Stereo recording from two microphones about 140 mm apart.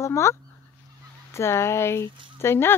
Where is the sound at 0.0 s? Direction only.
20° left (ahead or behind).